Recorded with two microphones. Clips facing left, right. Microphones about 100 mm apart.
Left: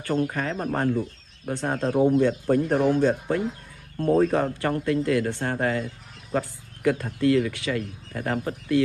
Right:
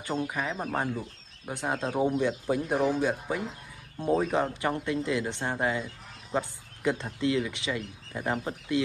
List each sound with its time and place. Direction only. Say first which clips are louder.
0.0 s speech: left 5 dB; 10° right (ahead or behind)
6.3 s a sound: left 3 dB; 20° right (ahead or behind)
7.2 s speech: left 6 dB; 15° right (ahead or behind)